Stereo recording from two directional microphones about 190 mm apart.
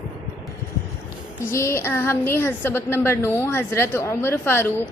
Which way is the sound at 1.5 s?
15° left (ahead or behind).